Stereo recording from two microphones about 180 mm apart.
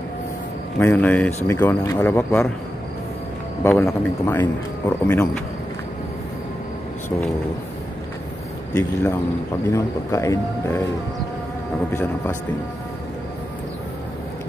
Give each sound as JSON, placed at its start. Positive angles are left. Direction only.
{"t": 0.7, "sound": "speech", "side_deg": 10}
{"t": 3.8, "sound": "speech", "side_deg": 10}
{"t": 8.7, "sound": "speech", "side_deg": 15}
{"t": 11.9, "sound": "speech", "side_deg": 10}